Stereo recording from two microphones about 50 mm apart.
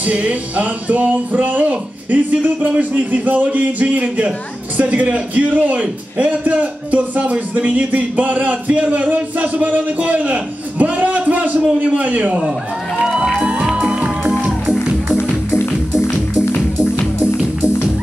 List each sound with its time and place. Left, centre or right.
0.0 s a man's voice: right
13.0 s music: centre
13.4 s music: right
15.1 s music: left